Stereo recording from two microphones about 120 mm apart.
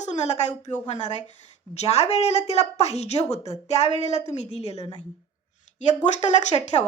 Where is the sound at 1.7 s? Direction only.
60° left (ahead or behind).